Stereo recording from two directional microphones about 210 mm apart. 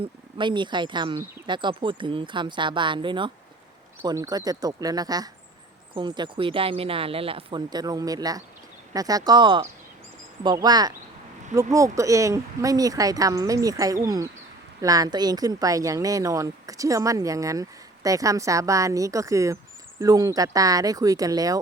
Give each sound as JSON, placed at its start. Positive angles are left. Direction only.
{"t": 0.0, "sound": "speech", "side_deg": -20}